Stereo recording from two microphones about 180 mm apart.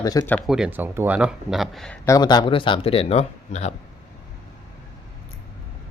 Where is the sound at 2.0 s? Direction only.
20° left (ahead or behind); by 3.7 s 40° left (ahead or behind).